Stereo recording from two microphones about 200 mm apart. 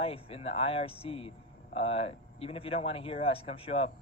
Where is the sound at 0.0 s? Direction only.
30° left (ahead or behind).